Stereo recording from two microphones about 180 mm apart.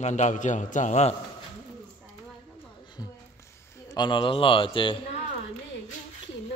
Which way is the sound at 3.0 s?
20° left (ahead or behind).